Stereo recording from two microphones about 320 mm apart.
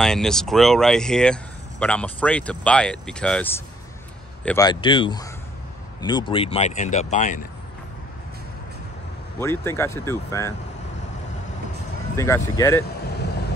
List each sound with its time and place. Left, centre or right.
0.0 s speech: centre; by 7.4 s left
9.4 s speech: centre
12.2 s speech: centre